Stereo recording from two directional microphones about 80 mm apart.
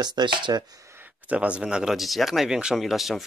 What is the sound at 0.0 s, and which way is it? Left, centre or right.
Speech, right.